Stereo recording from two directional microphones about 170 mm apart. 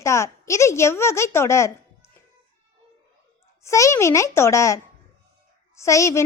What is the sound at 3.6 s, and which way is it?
A child's voice, 15° left (ahead or behind).